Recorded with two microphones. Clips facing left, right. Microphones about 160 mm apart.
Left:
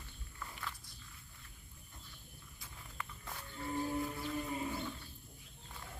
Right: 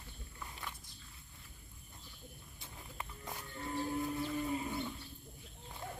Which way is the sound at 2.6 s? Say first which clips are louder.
Right 1 dB; 20° right (ahead or behind).